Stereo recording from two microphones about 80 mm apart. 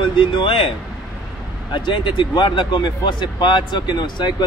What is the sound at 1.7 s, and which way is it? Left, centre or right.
Speech, left.